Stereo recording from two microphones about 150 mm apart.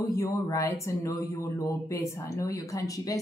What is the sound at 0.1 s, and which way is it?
Speech, 20° left (ahead or behind).